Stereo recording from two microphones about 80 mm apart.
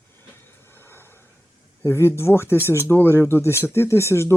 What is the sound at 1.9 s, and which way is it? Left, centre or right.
Speech, left.